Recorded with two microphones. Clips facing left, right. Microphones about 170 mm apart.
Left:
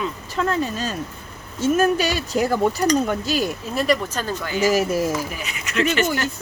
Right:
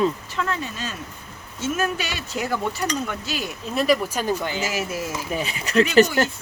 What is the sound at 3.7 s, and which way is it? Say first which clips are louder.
Speech: right 2 dB; centre (ahead or behind).